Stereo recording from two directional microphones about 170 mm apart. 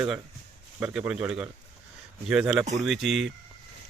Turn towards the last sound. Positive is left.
turn(degrees=0)  # may be behind; listen again after turning